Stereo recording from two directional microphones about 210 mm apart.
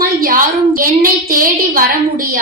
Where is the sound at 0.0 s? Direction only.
40° right (ahead or behind).